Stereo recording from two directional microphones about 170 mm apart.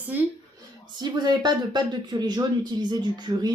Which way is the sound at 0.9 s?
25° right (ahead or behind).